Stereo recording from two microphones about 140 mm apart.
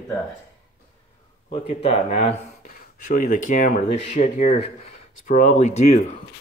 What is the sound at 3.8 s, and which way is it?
Speech, 45° left (ahead or behind).